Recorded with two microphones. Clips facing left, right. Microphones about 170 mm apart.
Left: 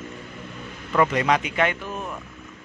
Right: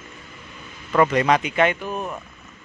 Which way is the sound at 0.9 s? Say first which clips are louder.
Right 3 dB; 40° right (ahead or behind).